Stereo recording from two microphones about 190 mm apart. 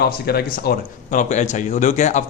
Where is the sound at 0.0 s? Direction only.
55° left (ahead or behind).